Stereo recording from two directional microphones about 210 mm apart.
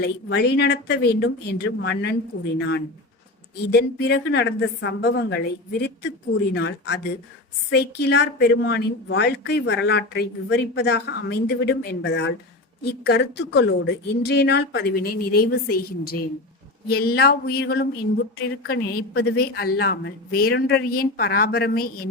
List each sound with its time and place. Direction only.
0.0 s a woman's voice: 50° left (ahead or behind)
3.7 s a woman's voice: 50° left (ahead or behind)